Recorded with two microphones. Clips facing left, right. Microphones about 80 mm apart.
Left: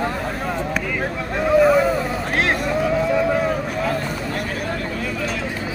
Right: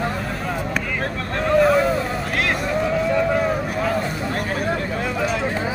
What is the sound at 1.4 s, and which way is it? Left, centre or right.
Boat, centre.